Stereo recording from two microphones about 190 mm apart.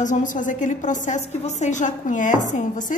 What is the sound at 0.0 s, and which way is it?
A woman's voice, 40° left (ahead or behind).